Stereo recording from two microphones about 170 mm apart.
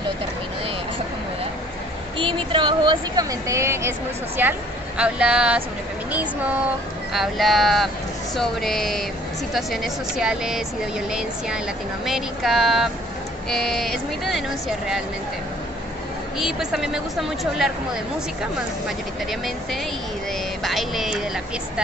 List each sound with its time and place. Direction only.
2.1 s speech: 30° right (ahead or behind); by 15.0 s centre (ahead or behind)
16.3 s speech: centre (ahead or behind)
20.6 s speech: centre (ahead or behind)